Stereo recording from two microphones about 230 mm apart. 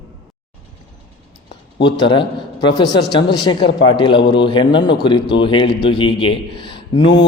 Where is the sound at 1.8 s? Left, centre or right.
Left.